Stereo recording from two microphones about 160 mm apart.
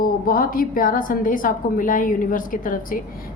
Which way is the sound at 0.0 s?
65° left (ahead or behind).